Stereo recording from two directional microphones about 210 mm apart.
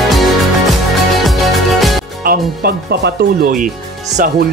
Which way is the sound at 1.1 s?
Centre (ahead or behind).